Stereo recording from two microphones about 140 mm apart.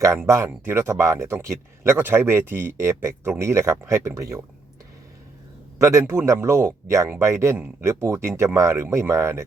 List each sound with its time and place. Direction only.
0.3 s speech: 20° right (ahead or behind)
5.8 s speech: 20° right (ahead or behind)
7.5 s speech: 10° right (ahead or behind)
7.9 s speech: 20° right (ahead or behind)